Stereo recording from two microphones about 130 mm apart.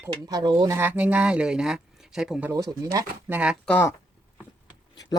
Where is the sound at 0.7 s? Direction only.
15° right (ahead or behind).